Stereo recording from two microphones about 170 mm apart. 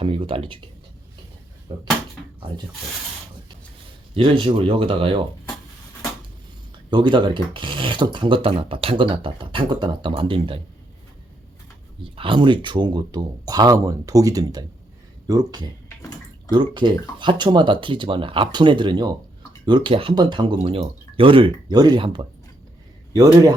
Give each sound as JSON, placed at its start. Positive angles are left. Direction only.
{"t": 0.0, "sound": "speech", "side_deg": -30}
{"t": 1.7, "sound": "speech", "side_deg": -25}
{"t": 4.1, "sound": "speech", "side_deg": -30}
{"t": 6.9, "sound": "speech", "side_deg": -30}
{"t": 12.1, "sound": "speech", "side_deg": -30}